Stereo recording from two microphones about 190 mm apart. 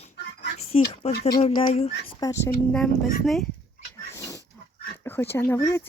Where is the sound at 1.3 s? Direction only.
30° left (ahead or behind).